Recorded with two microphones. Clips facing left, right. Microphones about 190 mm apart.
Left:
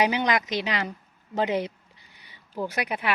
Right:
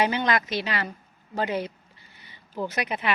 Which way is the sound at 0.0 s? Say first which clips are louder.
Even; 15° left (ahead or behind).